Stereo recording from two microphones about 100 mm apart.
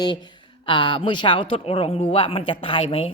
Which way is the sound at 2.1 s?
65° left (ahead or behind).